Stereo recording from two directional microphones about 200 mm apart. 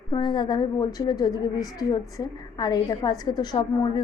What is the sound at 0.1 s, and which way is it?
A woman's voice, 20° left (ahead or behind).